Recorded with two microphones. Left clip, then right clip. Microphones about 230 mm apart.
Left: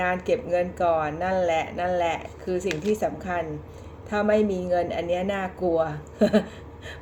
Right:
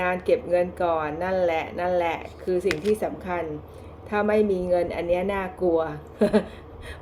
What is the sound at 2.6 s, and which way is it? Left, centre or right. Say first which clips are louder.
Speech: right 2 dB; right.